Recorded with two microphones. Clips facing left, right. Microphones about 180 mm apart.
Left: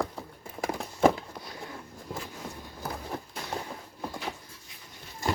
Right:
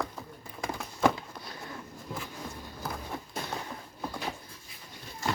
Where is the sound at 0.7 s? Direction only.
30° left (ahead or behind).